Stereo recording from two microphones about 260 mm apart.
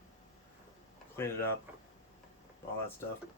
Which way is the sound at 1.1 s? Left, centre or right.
Centre.